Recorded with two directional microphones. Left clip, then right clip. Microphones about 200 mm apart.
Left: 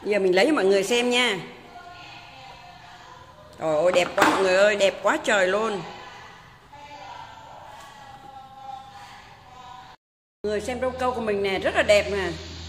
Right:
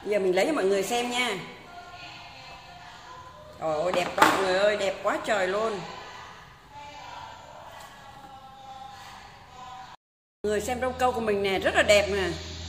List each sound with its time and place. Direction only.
0.1 s a man's voice: 45° left (ahead or behind)
3.6 s speech: 55° left (ahead or behind)
10.4 s speech: 5° left (ahead or behind)